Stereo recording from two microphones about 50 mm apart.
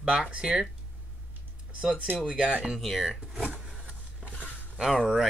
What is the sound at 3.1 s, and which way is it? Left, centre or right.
Power windows, centre.